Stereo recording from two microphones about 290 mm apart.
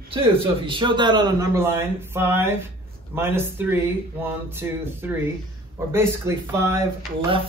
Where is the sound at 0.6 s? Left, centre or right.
Centre.